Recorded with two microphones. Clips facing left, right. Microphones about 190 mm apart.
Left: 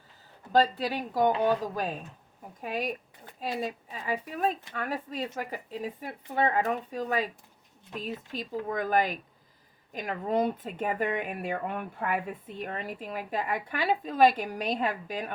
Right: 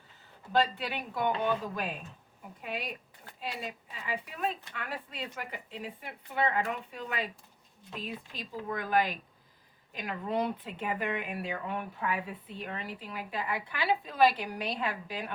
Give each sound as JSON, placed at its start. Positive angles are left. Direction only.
{"t": 0.5, "sound": "a woman's voice", "side_deg": 40}